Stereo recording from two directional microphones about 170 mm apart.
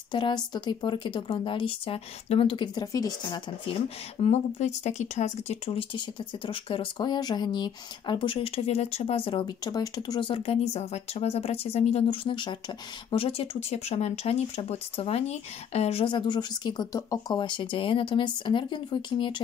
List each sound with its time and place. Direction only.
0.1 s speech: 25° left (ahead or behind)
4.2 s speech: 40° left (ahead or behind)